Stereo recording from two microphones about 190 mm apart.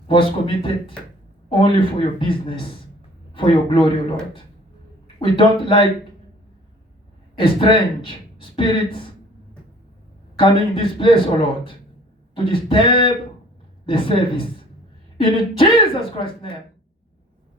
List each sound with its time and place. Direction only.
0.1 s speech: 25° left (ahead or behind)
5.0 s speech: 25° left (ahead or behind)
7.3 s speech: 25° left (ahead or behind)
10.3 s speech: 25° left (ahead or behind)